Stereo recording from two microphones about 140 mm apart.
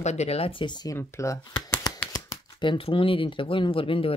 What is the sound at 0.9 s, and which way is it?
Speech, 20° left (ahead or behind).